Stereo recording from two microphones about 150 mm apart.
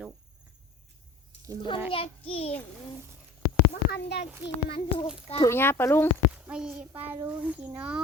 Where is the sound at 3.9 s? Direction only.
90° left.